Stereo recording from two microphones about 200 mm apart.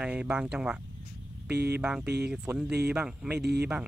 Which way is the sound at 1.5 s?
55° right (ahead or behind).